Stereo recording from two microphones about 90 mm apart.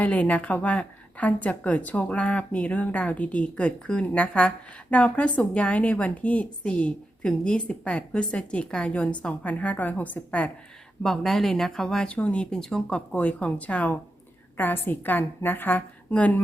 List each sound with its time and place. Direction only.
0.0 s a woman's voice: 15° left (ahead or behind)
11.0 s a woman's voice: 5° left (ahead or behind)